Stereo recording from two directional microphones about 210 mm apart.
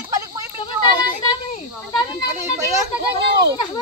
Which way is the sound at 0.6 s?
20° left (ahead or behind).